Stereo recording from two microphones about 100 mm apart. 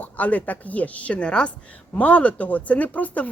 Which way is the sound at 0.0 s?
15° left (ahead or behind).